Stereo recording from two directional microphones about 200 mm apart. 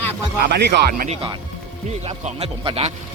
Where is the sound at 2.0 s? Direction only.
30° right (ahead or behind).